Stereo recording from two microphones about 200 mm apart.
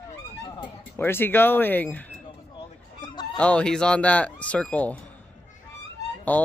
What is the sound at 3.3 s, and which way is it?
Speech, 5° left (ahead or behind).